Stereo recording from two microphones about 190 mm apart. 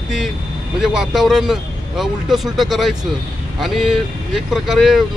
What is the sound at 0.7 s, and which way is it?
Speech, centre (ahead or behind).